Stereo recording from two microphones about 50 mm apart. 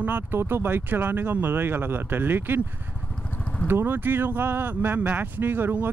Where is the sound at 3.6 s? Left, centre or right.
Right.